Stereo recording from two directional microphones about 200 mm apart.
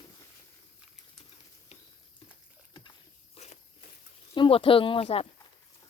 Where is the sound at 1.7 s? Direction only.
30° left (ahead or behind).